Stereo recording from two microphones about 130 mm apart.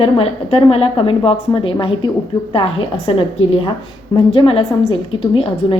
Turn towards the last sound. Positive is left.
turn(degrees=45)  # may be behind; listen again after turning